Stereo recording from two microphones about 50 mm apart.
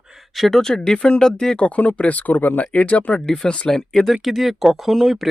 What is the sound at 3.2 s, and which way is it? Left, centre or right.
Speech, centre.